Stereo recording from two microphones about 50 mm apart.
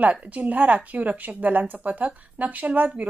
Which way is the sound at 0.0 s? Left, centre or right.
Right.